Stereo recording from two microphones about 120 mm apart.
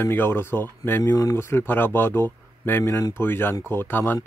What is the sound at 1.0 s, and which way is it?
Speech, 30° left (ahead or behind).